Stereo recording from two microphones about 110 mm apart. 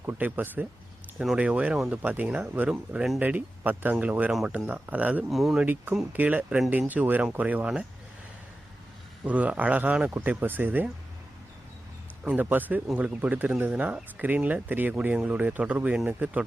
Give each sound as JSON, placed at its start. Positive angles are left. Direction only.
{"t": 0.0, "sound": "speech", "side_deg": -15}
{"t": 1.2, "sound": "speech", "side_deg": -5}
{"t": 5.3, "sound": "speech", "side_deg": 0}
{"t": 5.6, "sound": "speech", "side_deg": -15}
{"t": 9.2, "sound": "speech", "side_deg": -10}
{"t": 12.2, "sound": "speech", "side_deg": -15}